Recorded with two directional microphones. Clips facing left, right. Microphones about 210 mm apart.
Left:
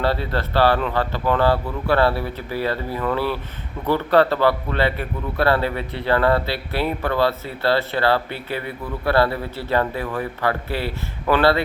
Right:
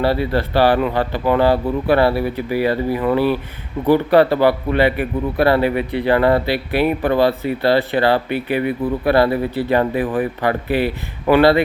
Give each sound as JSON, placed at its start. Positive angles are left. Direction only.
{"t": 0.0, "sound": "a man's voice", "side_deg": -10}